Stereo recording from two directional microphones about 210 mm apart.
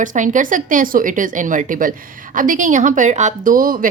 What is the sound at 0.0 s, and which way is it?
Speech, 40° right (ahead or behind).